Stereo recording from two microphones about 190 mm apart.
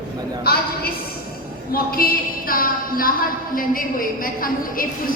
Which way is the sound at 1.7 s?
50° left (ahead or behind).